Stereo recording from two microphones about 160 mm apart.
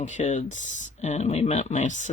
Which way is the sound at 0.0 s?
50° left (ahead or behind).